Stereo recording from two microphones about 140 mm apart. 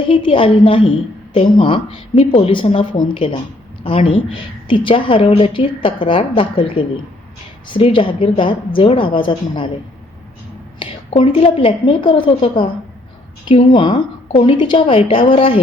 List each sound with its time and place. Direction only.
0.0 s a woman's voice: 40° left (ahead or behind)
10.8 s a woman's voice: 40° left (ahead or behind)